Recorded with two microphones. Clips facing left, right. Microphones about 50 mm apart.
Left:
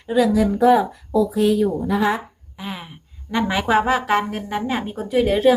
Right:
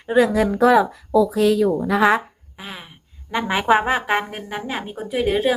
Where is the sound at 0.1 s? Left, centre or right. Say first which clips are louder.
Right 1 dB; right.